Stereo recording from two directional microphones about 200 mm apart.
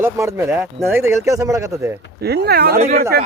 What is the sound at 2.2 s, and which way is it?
Speech, 55° right (ahead or behind).